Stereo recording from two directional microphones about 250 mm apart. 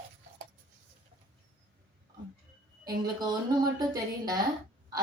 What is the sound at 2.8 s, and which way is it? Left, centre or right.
A woman's voice, centre.